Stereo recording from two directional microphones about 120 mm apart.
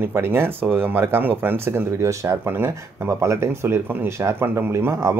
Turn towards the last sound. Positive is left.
turn(degrees=-20)  # may be behind; listen again after turning